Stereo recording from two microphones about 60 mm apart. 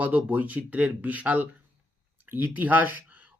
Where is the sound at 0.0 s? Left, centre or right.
Right.